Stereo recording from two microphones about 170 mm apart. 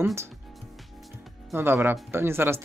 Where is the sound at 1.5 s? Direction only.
15° right (ahead or behind).